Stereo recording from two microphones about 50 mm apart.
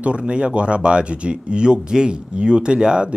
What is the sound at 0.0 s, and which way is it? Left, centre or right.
Speech, right.